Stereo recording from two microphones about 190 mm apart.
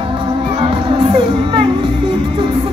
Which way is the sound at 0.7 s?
25° right (ahead or behind).